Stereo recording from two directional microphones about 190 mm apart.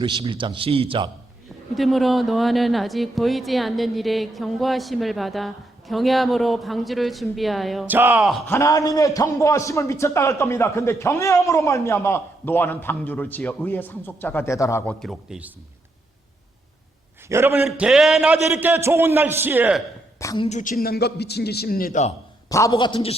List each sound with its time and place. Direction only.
0.0 s a man's voice: 25° right (ahead or behind)
1.7 s a woman's voice: centre (ahead or behind)
8.4 s a man's voice: 15° left (ahead or behind)
14.9 s a woman's voice: centre (ahead or behind)
17.2 s a man's voice: 15° right (ahead or behind)
20.1 s a woman's voice: 15° left (ahead or behind)
20.4 s a man's voice: 40° left (ahead or behind)
22.4 s a man's voice: 15° left (ahead or behind)